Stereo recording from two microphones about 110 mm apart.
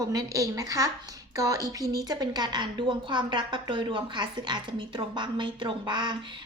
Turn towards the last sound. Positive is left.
turn(degrees=-45)  # may be behind; listen again after turning